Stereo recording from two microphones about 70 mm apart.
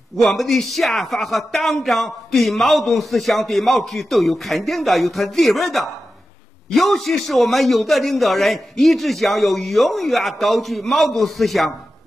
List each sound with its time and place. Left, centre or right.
0.2 s a man's voice: centre